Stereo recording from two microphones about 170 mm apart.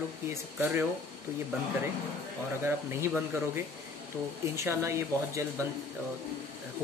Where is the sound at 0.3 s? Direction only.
10° right (ahead or behind).